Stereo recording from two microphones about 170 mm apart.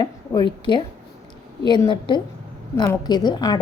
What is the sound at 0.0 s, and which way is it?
A woman's voice, 25° left (ahead or behind).